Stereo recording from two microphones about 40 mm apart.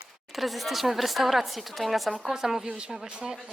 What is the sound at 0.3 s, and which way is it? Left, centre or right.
Speech, centre.